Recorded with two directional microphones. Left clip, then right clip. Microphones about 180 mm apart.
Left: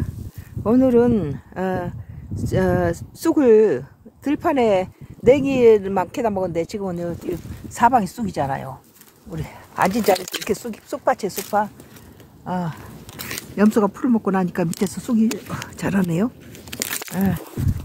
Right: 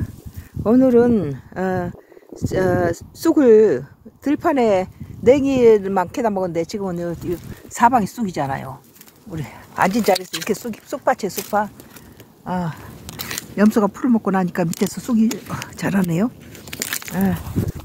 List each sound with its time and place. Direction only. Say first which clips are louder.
0.7 s speech: right 2 dB; 25° right (ahead or behind)
7.2 s speech: right 2 dB; 35° right (ahead or behind)
17.1 s speech: right 3 dB; 35° right (ahead or behind)